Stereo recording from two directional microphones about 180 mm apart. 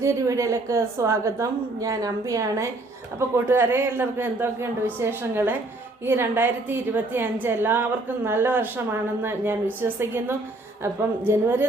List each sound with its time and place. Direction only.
0.0 s a woman's voice: 15° right (ahead or behind)